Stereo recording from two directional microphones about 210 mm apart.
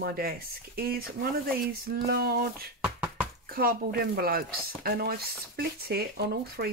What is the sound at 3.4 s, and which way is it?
Speech, 45° right (ahead or behind).